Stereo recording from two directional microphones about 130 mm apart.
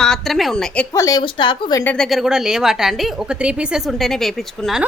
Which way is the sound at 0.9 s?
25° left (ahead or behind).